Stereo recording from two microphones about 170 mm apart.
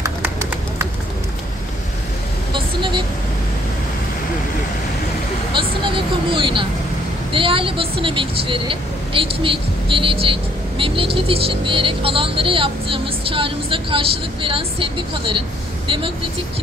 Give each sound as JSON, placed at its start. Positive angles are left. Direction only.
{"t": 0.0, "sound": "run", "side_deg": -15}
{"t": 2.5, "sound": "vehicle", "side_deg": -30}
{"t": 5.5, "sound": "vehicle", "side_deg": -30}
{"t": 11.1, "sound": "speech", "side_deg": -35}